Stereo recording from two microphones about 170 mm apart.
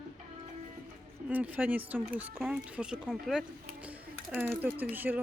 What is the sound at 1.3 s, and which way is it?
Speech, 10° right (ahead or behind).